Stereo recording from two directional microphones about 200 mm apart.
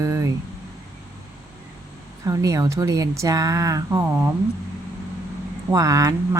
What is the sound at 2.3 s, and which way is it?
Speech, 15° right (ahead or behind).